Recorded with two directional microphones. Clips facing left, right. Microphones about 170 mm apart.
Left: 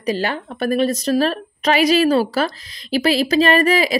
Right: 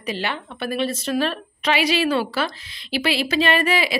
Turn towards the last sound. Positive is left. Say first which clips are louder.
# left 5 dB
turn(degrees=40)  # may be behind; listen again after turning